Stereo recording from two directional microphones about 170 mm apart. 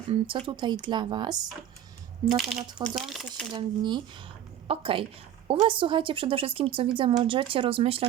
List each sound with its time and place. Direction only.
0.1 s speech: 30° right (ahead or behind)
2.3 s speech: centre (ahead or behind)
3.5 s speech: 25° right (ahead or behind)